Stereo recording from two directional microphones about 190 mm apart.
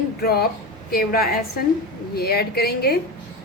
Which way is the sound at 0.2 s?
55° left (ahead or behind).